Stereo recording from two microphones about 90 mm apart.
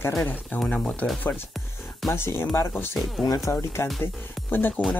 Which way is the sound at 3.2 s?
35° left (ahead or behind).